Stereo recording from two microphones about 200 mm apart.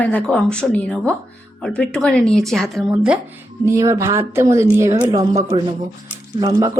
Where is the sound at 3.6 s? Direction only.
15° right (ahead or behind).